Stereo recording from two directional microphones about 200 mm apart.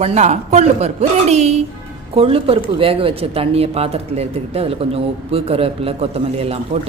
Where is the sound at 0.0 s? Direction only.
35° right (ahead or behind).